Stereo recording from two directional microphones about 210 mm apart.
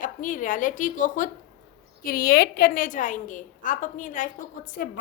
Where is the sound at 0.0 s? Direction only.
40° left (ahead or behind).